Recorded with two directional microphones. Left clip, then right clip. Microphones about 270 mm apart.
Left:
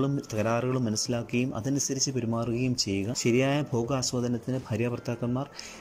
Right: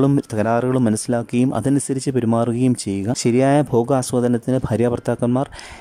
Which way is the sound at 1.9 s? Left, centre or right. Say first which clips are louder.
Right 7 dB; right.